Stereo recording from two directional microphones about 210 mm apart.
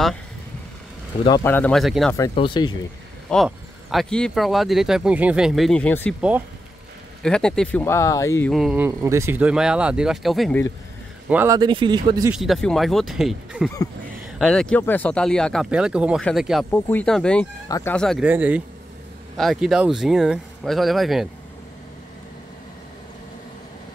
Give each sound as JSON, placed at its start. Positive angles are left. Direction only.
{"t": 1.2, "sound": "speech", "side_deg": 15}
{"t": 2.3, "sound": "speech", "side_deg": 25}
{"t": 3.3, "sound": "speech", "side_deg": 0}
{"t": 7.2, "sound": "speech", "side_deg": 5}
{"t": 8.5, "sound": "speech", "side_deg": 0}
{"t": 11.2, "sound": "speech", "side_deg": -10}
{"t": 12.3, "sound": "speech", "side_deg": 0}
{"t": 17.6, "sound": "speech", "side_deg": 15}
{"t": 17.9, "sound": "speech", "side_deg": 0}